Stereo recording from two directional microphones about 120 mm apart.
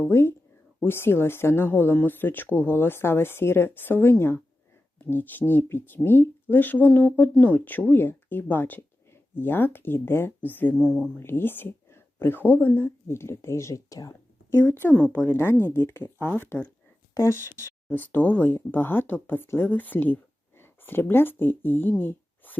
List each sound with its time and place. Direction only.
0.1 s speech: 20° left (ahead or behind)
14.6 s speech: 15° left (ahead or behind)